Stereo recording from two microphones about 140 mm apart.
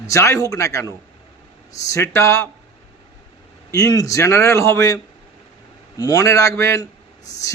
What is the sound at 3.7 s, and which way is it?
A man's voice, 25° left (ahead or behind).